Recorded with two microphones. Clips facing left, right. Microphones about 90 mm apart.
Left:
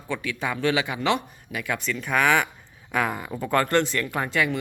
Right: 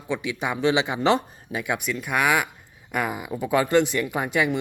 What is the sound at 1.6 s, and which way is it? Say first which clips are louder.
Speech: even; 15° right (ahead or behind).